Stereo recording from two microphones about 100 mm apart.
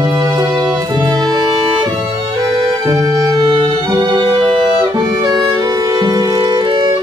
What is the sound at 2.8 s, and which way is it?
Music, 40° right (ahead or behind).